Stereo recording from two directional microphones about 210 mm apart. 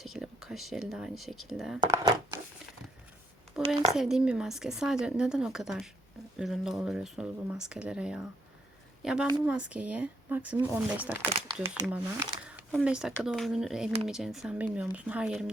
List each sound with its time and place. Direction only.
0.0 s speech: centre (ahead or behind)
1.8 s speech: 15° right (ahead or behind)
3.6 s speech: 5° right (ahead or behind)
9.5 s speech: 5° right (ahead or behind)